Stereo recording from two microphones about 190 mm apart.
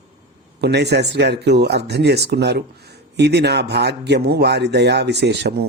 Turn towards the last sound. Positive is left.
turn(degrees=-60)  # may be behind; listen again after turning